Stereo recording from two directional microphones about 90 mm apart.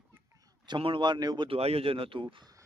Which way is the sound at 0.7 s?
70° right (ahead or behind).